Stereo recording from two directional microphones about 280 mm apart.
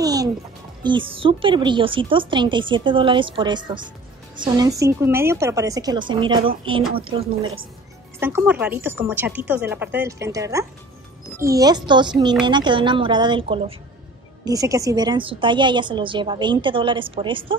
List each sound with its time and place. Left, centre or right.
0.0 s music: centre
0.8 s a woman's voice: centre
8.2 s a woman's voice: centre